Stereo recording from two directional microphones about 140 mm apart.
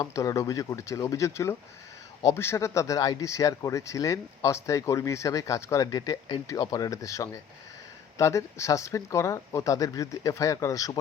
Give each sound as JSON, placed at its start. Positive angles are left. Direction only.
{"t": 0.0, "sound": "speech", "side_deg": 20}